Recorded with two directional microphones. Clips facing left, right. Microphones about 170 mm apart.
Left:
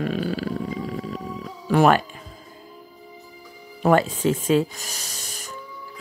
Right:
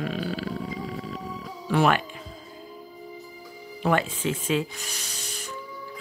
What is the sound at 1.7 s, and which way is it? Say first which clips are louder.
Speech: left 5 dB; 45° left (ahead or behind).